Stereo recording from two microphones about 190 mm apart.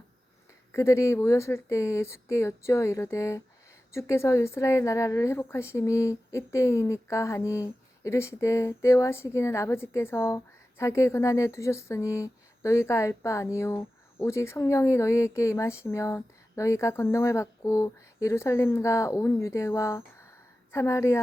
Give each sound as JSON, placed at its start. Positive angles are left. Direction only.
{"t": 0.7, "sound": "speech", "side_deg": 15}